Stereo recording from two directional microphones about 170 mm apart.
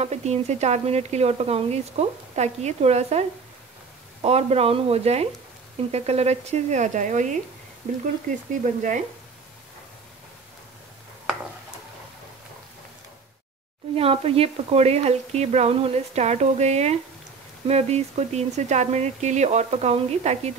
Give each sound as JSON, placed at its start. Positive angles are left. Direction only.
{"t": 0.0, "sound": "speech", "side_deg": -40}
{"t": 13.9, "sound": "speech", "side_deg": -35}